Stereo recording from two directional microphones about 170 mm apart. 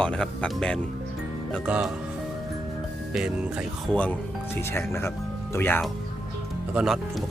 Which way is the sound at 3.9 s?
10° left (ahead or behind).